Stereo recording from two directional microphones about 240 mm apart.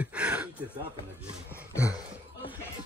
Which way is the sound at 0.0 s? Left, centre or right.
Centre.